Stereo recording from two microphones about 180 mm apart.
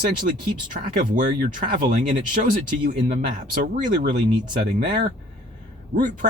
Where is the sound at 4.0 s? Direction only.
50° right (ahead or behind).